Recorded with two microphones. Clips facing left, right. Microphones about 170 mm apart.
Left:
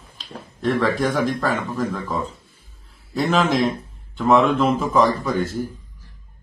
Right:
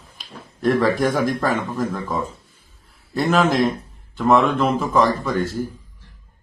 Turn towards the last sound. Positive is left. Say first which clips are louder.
# even
turn(degrees=0)  # may be behind; listen again after turning